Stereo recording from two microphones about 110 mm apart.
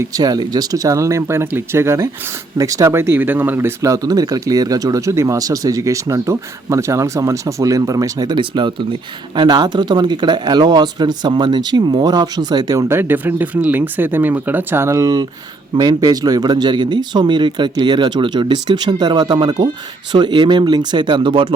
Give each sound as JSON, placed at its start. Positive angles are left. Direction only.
{"t": 0.2, "sound": "speech", "side_deg": -35}